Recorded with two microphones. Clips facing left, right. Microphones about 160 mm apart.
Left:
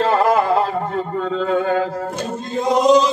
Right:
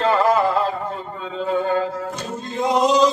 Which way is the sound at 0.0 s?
55° left (ahead or behind).